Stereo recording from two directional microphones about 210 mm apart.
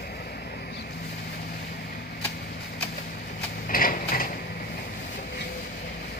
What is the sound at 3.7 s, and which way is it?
Mechanisms, 40° left (ahead or behind).